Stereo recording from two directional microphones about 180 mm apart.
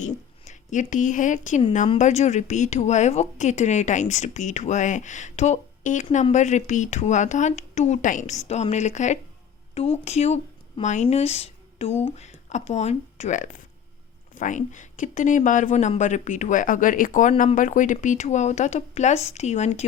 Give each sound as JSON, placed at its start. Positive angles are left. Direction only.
{"t": 0.0, "sound": "a woman's voice", "side_deg": 40}